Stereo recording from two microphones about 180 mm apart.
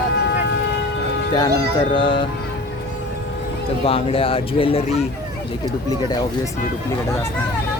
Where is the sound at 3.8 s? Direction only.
30° left (ahead or behind).